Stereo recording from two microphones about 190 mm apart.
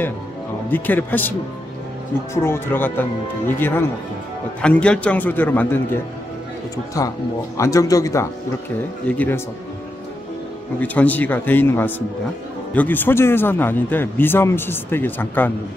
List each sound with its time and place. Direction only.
0.7 s a man's voice: 10° left (ahead or behind)
2.3 s a man's voice: 15° left (ahead or behind)
7.0 s a man's voice: 15° left (ahead or behind)
10.8 s a man's voice: 10° left (ahead or behind)